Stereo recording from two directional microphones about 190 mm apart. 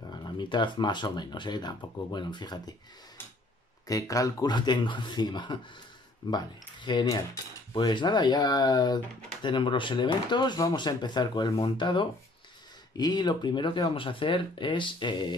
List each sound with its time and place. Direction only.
0.1 s speech: 25° left (ahead or behind)
3.8 s speech: 20° left (ahead or behind)